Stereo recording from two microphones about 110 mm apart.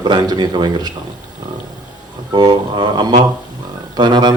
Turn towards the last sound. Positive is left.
turn(degrees=-40)  # may be behind; listen again after turning